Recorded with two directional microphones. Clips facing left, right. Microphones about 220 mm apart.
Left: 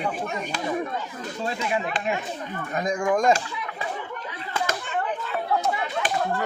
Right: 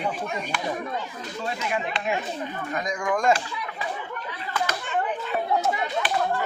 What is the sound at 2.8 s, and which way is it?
Speech, 25° left (ahead or behind).